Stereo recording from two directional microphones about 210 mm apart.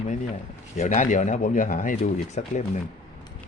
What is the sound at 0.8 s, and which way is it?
Speech, 35° left (ahead or behind).